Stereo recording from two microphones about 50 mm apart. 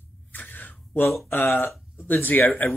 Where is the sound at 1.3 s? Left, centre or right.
Left.